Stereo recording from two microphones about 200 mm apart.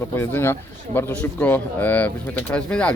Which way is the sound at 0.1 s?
10° left (ahead or behind).